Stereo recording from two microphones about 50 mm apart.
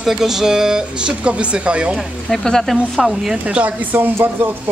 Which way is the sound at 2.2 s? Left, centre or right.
Centre.